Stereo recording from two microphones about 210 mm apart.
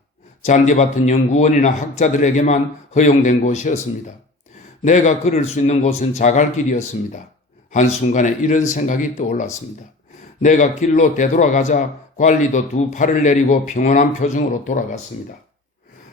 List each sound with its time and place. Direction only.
0.4 s a man's voice: 35° left (ahead or behind)
4.8 s a man's voice: 35° left (ahead or behind)